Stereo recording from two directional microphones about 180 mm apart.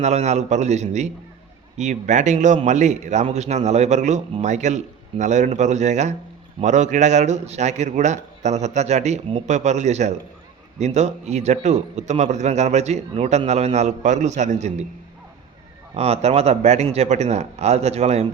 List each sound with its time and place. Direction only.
0.0 s a man's voice: 40° right (ahead or behind)
16.0 s a man's voice: 35° right (ahead or behind)